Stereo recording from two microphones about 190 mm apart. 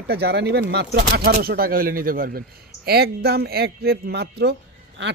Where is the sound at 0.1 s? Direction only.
60° right (ahead or behind).